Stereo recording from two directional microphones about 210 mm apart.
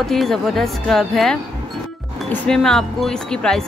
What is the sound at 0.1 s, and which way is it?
Speech, centre (ahead or behind).